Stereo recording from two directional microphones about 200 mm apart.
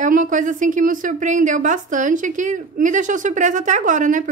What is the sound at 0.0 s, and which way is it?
A woman's voice, 40° right (ahead or behind).